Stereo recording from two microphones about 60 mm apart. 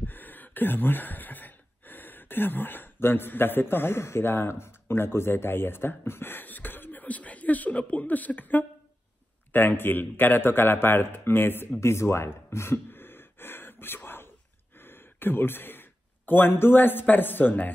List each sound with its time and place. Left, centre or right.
0.0 s a man's voice: left
11.8 s gasp: left
14.8 s a sound: left
17.0 s a man's voice: left